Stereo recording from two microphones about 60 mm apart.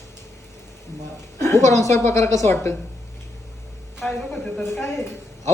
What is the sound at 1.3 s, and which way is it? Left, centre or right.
A woman's voice, left.